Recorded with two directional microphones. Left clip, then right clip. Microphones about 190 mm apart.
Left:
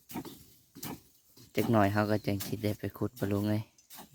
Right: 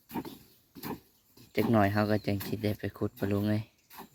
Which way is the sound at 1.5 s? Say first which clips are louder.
Right 1 dB; 25° left (ahead or behind).